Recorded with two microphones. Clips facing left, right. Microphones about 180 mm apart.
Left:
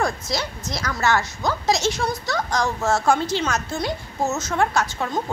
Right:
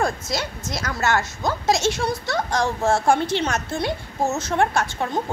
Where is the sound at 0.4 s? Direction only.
50° right (ahead or behind).